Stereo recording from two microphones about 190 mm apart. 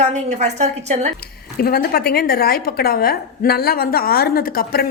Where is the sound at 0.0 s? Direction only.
40° right (ahead or behind).